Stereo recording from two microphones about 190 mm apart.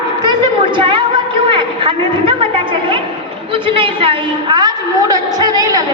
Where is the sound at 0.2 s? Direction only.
25° right (ahead or behind).